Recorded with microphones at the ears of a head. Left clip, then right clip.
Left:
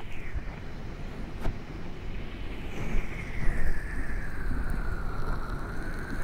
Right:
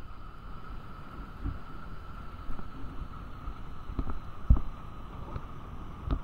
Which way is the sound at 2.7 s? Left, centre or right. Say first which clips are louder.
Left 8 dB; left.